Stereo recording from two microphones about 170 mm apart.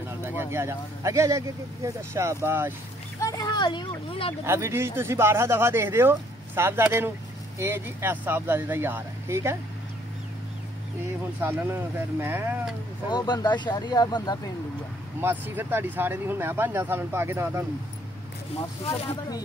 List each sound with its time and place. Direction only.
0.2 s speech: 15° right (ahead or behind)
3.2 s speech: 20° left (ahead or behind)
4.5 s speech: 15° right (ahead or behind)
11.3 s speech: 10° right (ahead or behind)
13.1 s speech: 25° left (ahead or behind)
15.1 s speech: 10° right (ahead or behind)
18.9 s speech: 25° left (ahead or behind)